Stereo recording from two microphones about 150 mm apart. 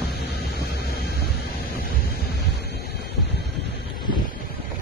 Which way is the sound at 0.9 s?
90° left.